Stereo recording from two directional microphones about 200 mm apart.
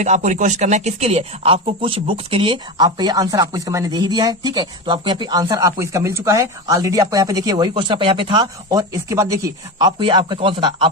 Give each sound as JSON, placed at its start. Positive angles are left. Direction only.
{"t": 0.0, "sound": "speech", "side_deg": -35}